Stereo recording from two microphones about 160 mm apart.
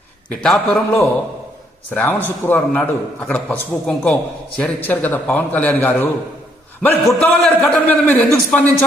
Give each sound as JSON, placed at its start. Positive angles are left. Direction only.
{"t": 0.3, "sound": "a man's voice", "side_deg": 0}
{"t": 0.7, "sound": "a man's voice", "side_deg": 15}